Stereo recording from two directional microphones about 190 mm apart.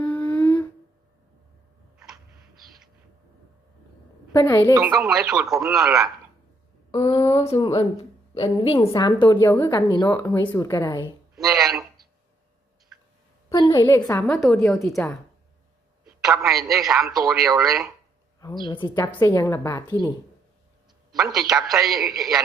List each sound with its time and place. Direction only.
0.0 s a sound: 10° left (ahead or behind)
4.3 s a woman's voice: 15° left (ahead or behind)
4.7 s speech: 15° right (ahead or behind)
4.9 s a man's voice: centre (ahead or behind)
6.9 s a woman's voice: 30° left (ahead or behind)
11.3 s a sound: centre (ahead or behind)
13.5 s a woman's voice: 15° left (ahead or behind); by 15.0 s centre (ahead or behind)
16.0 s a man's voice: centre (ahead or behind)
18.3 s a woman's voice: 20° left (ahead or behind)
21.1 s a man's voice: centre (ahead or behind)